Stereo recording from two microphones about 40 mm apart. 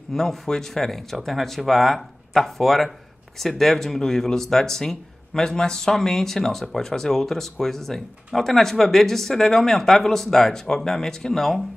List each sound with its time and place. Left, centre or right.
0.1 s speech: centre